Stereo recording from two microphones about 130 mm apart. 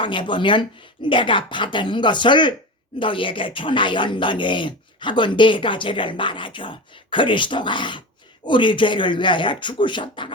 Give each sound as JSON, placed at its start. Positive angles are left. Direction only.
{"t": 0.0, "sound": "speech", "side_deg": 40}